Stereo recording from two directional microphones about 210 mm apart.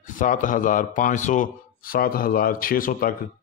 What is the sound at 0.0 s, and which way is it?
A man's voice, 40° left (ahead or behind).